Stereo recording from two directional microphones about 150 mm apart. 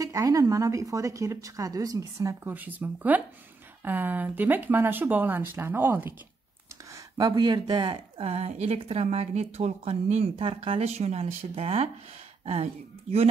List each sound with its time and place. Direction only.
0.0 s speech: 20° right (ahead or behind)
6.9 s speech: 25° right (ahead or behind); by 11.9 s 40° right (ahead or behind)
13.1 s speech: 45° right (ahead or behind)